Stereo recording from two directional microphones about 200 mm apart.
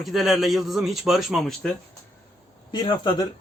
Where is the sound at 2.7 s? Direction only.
20° left (ahead or behind).